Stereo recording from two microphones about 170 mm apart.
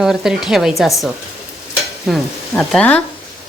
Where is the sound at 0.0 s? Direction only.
5° right (ahead or behind).